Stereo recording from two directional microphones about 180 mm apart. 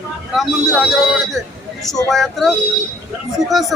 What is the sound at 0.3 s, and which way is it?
Speech, centre (ahead or behind).